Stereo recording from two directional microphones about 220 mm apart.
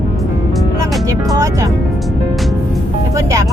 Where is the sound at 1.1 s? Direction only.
15° right (ahead or behind).